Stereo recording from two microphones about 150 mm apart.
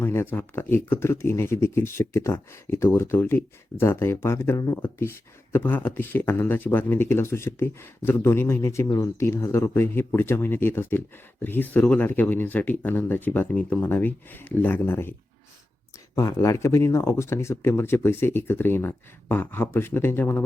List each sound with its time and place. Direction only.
0.0 s speech: 15° left (ahead or behind)
16.1 s speech: 20° left (ahead or behind)